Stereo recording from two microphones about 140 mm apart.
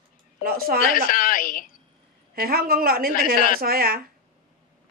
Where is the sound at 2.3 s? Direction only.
90° right.